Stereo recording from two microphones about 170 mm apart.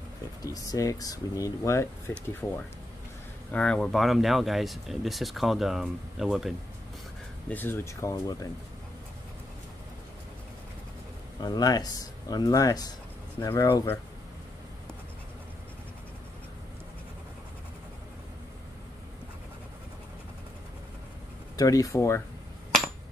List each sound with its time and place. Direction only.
0.4 s speech: 20° left (ahead or behind); by 6.5 s centre (ahead or behind)
7.4 s speech: 10° left (ahead or behind)
11.4 s speech: 20° left (ahead or behind)
21.5 s speech: 20° left (ahead or behind)